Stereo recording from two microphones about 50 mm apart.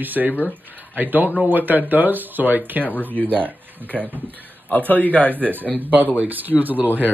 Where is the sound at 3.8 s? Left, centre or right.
Right.